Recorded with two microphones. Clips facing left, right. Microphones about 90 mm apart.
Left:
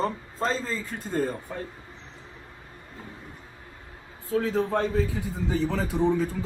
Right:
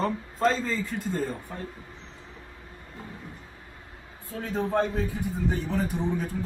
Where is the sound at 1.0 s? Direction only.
55° left (ahead or behind).